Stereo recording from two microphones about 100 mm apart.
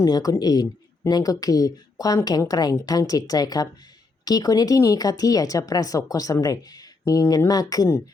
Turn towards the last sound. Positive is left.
turn(degrees=40)  # may be behind; listen again after turning